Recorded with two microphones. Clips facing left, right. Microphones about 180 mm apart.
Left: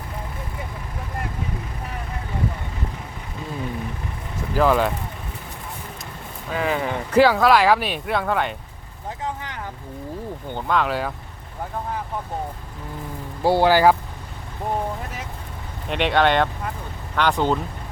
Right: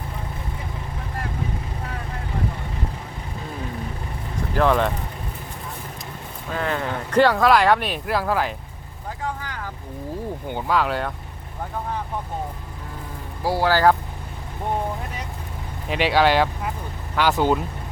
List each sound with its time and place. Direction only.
4.5 s speech: 5° left (ahead or behind)
6.5 s speech: 5° left (ahead or behind)
9.2 s vehicle: 20° left (ahead or behind)
10.5 s speech: 5° right (ahead or behind)
13.4 s speech: 25° left (ahead or behind)
15.9 s speech: 5° right (ahead or behind)